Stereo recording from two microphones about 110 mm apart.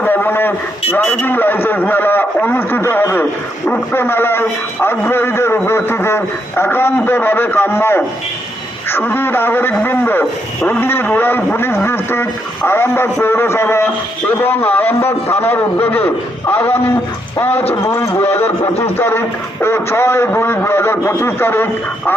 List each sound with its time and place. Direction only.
0.0 s a sound: 15° left (ahead or behind)
3.7 s a man's voice: 20° left (ahead or behind)
17.7 s a man's voice: 25° left (ahead or behind)